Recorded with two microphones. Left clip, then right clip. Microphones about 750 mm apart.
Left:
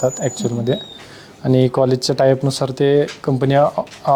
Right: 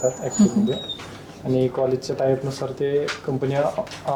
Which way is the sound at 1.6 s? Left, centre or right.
Left.